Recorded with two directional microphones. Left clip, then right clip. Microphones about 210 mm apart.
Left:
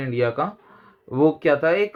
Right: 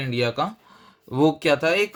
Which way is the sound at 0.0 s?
15° right (ahead or behind).